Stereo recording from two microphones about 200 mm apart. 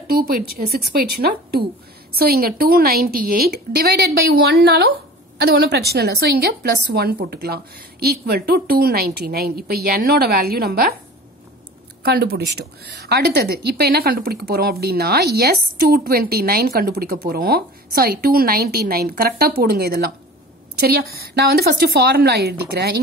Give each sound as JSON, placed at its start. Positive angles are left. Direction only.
{"t": 0.2, "sound": "a woman's voice", "side_deg": -45}
{"t": 12.0, "sound": "a woman's voice", "side_deg": -50}